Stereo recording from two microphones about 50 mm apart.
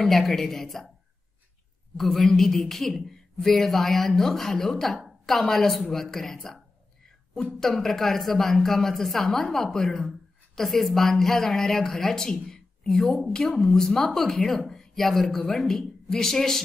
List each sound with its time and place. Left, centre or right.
0.0 s a woman's voice: centre
2.0 s a woman's voice: centre
7.6 s a woman's voice: centre